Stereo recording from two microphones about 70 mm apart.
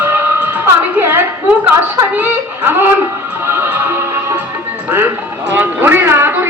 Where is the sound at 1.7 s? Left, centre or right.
Right.